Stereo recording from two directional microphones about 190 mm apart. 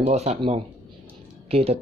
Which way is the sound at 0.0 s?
35° right (ahead or behind).